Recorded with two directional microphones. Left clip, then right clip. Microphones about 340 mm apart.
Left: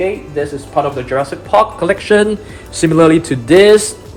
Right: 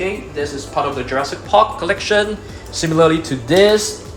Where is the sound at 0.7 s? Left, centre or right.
Centre.